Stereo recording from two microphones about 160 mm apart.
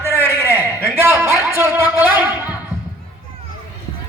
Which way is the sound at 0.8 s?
5° right (ahead or behind).